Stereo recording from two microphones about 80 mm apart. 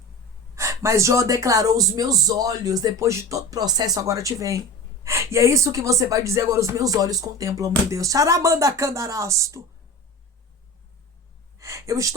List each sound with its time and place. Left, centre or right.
0.5 s speech: right
3.0 s speech: right
3.6 s speech: right
11.5 s a sound: right